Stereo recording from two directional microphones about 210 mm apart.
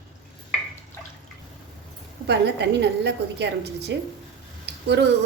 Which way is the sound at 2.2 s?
55° right (ahead or behind).